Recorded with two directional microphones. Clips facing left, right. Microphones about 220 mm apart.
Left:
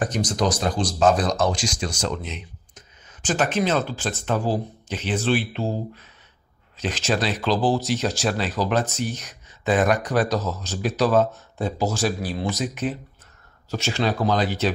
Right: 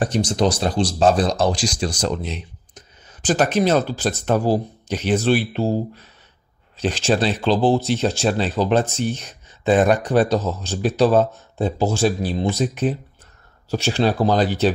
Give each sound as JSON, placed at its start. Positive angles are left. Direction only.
{"t": 0.0, "sound": "speech", "side_deg": -30}